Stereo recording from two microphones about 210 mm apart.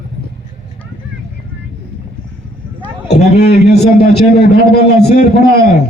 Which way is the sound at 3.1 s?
50° left (ahead or behind).